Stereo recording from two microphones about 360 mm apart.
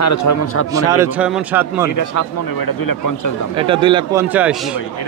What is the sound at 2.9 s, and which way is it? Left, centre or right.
Speech, left.